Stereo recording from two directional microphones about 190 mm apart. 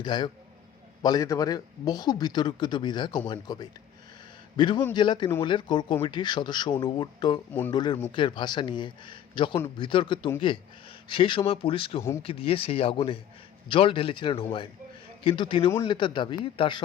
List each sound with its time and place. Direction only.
0.0 s speech: 25° left (ahead or behind)